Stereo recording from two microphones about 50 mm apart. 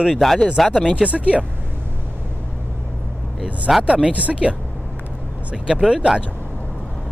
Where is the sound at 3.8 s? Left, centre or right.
Right.